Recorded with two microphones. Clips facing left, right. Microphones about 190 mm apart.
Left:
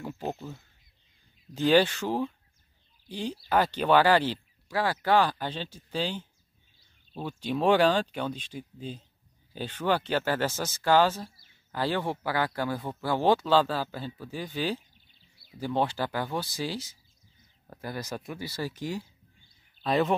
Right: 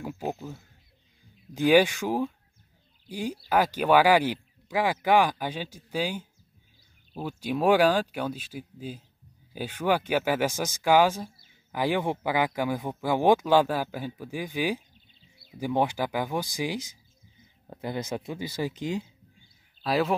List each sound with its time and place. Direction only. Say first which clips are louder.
0.0 s speech: right 2 dB; 10° right (ahead or behind)
19.8 s speech: even; 5° right (ahead or behind)